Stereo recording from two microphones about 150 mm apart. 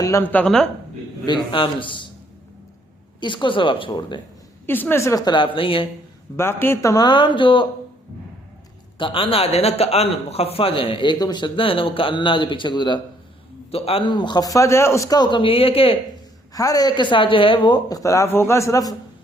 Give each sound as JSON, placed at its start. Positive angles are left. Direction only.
{"t": 0.0, "sound": "speech", "side_deg": 15}
{"t": 1.3, "sound": "a man's voice", "side_deg": 35}
{"t": 3.2, "sound": "a man's voice", "side_deg": 30}
{"t": 4.6, "sound": "speech", "side_deg": 15}
{"t": 6.3, "sound": "speech", "side_deg": 15}
{"t": 9.0, "sound": "a man's voice", "side_deg": 35}
{"t": 16.6, "sound": "speech", "side_deg": 25}